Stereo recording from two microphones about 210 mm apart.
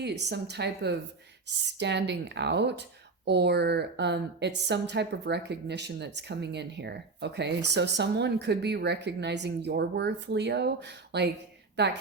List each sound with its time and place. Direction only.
0.0 s a woman's voice: 55° right (ahead or behind)